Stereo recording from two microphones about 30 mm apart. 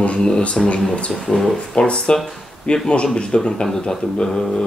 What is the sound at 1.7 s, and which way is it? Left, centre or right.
A man's voice, left.